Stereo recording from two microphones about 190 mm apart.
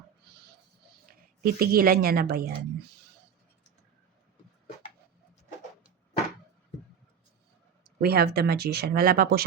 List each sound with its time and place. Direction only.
1.0 s a woman's voice: 50° right (ahead or behind)
7.9 s speech: 55° right (ahead or behind)